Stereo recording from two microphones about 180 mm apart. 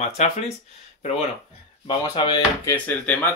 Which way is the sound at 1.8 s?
25° left (ahead or behind).